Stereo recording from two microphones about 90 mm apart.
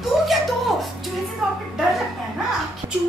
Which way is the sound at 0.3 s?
Centre (ahead or behind).